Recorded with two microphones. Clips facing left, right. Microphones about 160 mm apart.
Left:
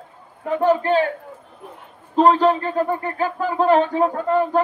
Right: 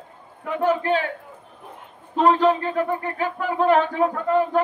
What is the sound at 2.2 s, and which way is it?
Speech, 35° left (ahead or behind).